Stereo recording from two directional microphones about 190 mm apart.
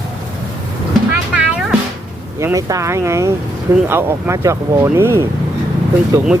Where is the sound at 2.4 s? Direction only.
15° right (ahead or behind).